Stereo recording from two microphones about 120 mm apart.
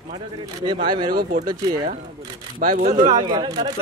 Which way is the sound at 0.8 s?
40° right (ahead or behind).